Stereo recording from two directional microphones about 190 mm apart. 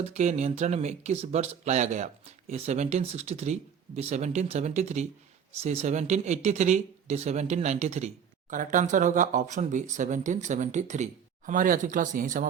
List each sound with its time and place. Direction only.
0.0 s speech: 35° right (ahead or behind)